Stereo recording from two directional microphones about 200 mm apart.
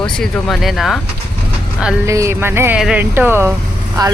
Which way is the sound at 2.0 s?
15° right (ahead or behind).